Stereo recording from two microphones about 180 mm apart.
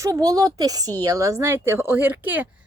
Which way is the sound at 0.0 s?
20° right (ahead or behind).